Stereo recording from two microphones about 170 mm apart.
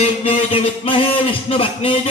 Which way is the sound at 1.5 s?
35° left (ahead or behind).